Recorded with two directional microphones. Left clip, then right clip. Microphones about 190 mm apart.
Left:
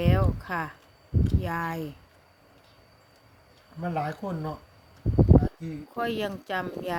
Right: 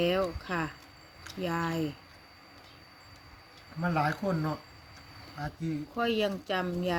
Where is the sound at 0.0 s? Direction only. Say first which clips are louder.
Even; 15° left (ahead or behind).